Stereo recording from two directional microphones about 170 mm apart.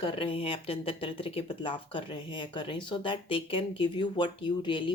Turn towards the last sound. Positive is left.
turn(degrees=30)  # may be behind; listen again after turning